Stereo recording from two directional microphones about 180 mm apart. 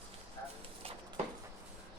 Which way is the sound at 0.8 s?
30° right (ahead or behind).